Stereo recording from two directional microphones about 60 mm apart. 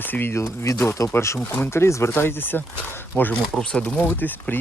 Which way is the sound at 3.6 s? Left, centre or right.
Centre.